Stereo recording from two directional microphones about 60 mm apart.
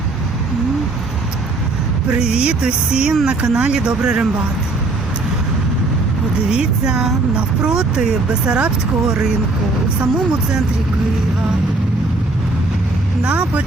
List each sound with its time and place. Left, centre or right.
2.0 s speech: centre
6.5 s speech: centre
13.2 s speech: centre